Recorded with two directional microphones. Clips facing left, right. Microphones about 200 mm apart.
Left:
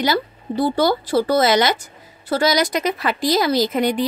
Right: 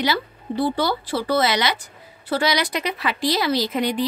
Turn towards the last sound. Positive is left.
turn(degrees=45)  # may be behind; listen again after turning